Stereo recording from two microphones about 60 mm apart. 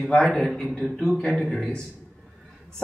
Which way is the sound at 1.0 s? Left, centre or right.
Centre.